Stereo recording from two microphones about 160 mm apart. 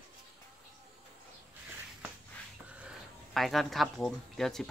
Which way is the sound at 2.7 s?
5° right (ahead or behind).